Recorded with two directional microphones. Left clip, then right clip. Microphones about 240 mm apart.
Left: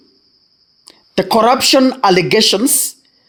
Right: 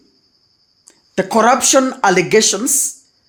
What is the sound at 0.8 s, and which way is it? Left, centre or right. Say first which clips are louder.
Speech: left 2 dB; left.